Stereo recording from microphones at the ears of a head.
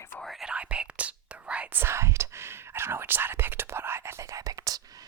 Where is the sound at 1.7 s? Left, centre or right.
Right.